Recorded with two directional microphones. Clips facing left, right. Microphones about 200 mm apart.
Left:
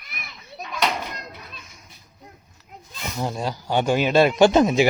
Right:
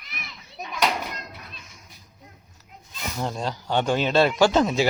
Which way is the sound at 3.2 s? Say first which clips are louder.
Left 2 dB; 10° left (ahead or behind).